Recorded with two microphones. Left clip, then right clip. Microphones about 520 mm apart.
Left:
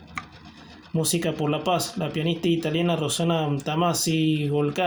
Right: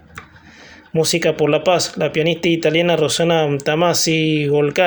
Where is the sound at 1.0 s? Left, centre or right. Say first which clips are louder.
Right 10 dB; left.